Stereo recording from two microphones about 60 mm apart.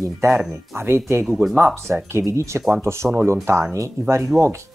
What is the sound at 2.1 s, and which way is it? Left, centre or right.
Speech, right.